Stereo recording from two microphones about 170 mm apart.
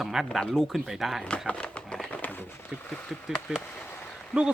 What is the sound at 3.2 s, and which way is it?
Speech, centre (ahead or behind).